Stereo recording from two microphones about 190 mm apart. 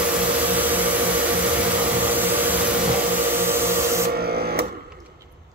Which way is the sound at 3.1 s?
10° right (ahead or behind).